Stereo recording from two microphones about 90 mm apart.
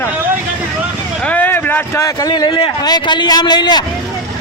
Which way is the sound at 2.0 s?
45° left (ahead or behind).